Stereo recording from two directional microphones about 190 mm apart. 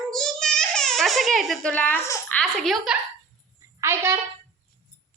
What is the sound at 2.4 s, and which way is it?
Speech, centre (ahead or behind).